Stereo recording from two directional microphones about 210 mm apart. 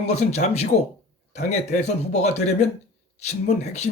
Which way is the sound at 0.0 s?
30° left (ahead or behind).